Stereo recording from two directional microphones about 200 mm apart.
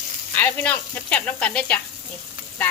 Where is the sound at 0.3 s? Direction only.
10° left (ahead or behind).